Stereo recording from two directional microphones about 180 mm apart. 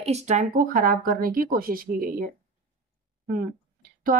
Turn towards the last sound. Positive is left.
turn(degrees=-45)  # may be behind; listen again after turning